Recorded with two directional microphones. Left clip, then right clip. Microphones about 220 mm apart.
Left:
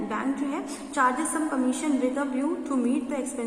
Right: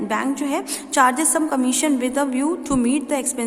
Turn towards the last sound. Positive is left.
turn(degrees=-50)  # may be behind; listen again after turning